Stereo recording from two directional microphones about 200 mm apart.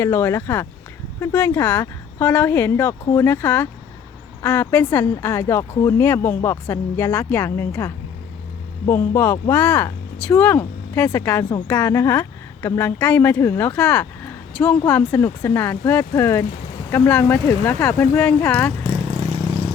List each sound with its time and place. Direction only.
0.0 s a woman's voice: 10° left (ahead or behind)
18.8 s vehicle: 30° right (ahead or behind)